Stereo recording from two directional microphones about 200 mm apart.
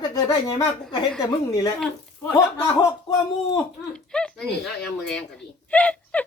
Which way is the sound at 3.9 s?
5° left (ahead or behind).